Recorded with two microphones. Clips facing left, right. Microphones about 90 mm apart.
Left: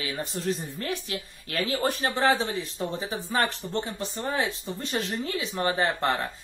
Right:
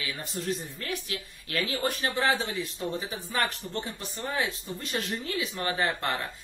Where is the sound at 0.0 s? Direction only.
30° left (ahead or behind).